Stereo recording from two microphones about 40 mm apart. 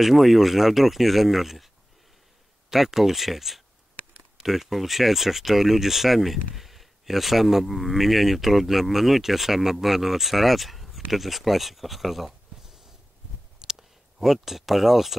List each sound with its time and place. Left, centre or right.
0.0 s speech: centre
2.7 s speech: centre
13.6 s clicking: centre
14.2 s speech: centre